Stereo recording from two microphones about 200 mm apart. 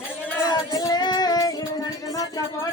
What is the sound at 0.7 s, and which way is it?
Music, 15° left (ahead or behind).